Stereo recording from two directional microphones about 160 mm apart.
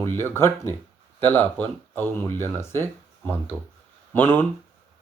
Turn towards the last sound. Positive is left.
turn(degrees=15)  # may be behind; listen again after turning